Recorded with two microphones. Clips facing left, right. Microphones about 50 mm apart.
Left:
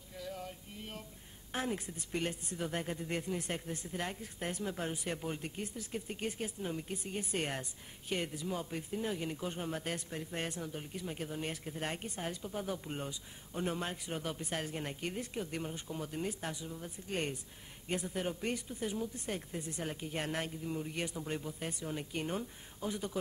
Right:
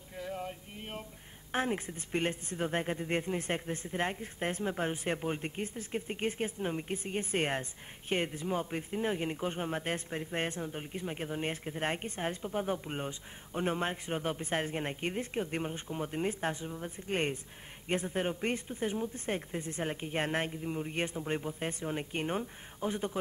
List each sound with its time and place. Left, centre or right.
0.1 s male singing: right
1.5 s speech: right